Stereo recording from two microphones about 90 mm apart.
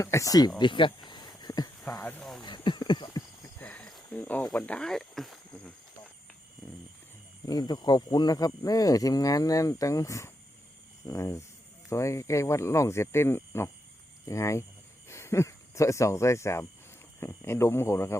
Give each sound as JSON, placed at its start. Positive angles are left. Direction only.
{"t": 0.0, "sound": "speech", "side_deg": 35}
{"t": 0.6, "sound": "a sound", "side_deg": 65}
{"t": 3.6, "sound": "cricket", "side_deg": 20}
{"t": 4.5, "sound": "speech", "side_deg": 15}
{"t": 7.4, "sound": "speech", "side_deg": 50}
{"t": 11.0, "sound": "a sound", "side_deg": 40}
{"t": 11.9, "sound": "speech", "side_deg": 35}